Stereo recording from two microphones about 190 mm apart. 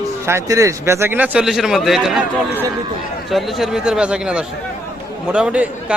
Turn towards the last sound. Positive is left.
turn(degrees=-5)  # may be behind; listen again after turning